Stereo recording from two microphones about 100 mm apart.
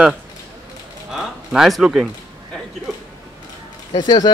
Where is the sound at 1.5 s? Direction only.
5° right (ahead or behind).